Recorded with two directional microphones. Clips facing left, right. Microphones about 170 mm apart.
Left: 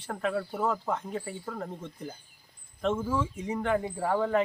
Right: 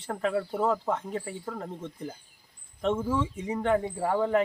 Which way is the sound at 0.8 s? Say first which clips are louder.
Right 2 dB; centre (ahead or behind).